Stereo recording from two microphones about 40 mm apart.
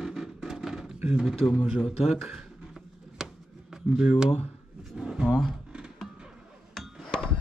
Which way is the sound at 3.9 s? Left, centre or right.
Centre.